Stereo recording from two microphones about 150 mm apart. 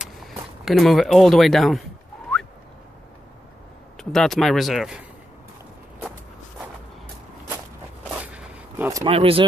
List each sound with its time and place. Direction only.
0.0 s speech: centre (ahead or behind)
3.9 s speech: 5° left (ahead or behind)
8.2 s a sound: 10° right (ahead or behind)
9.0 s speech: 35° right (ahead or behind)